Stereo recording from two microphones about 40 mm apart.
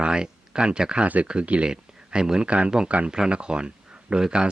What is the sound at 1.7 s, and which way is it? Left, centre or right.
Speech, centre.